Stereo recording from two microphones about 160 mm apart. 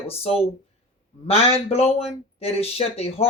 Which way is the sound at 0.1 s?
40° left (ahead or behind).